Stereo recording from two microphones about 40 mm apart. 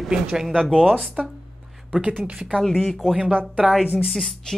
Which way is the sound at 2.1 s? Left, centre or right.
Right.